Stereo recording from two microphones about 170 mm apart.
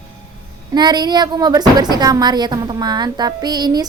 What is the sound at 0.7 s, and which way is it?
A woman's voice, 25° right (ahead or behind).